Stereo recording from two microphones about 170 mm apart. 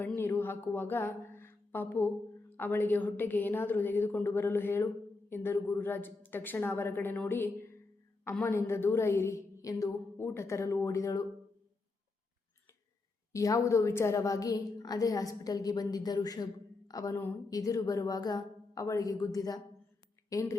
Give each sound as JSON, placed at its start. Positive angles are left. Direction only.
{"t": 0.2, "sound": "a woman's voice", "side_deg": 10}
{"t": 13.3, "sound": "a woman's voice", "side_deg": 20}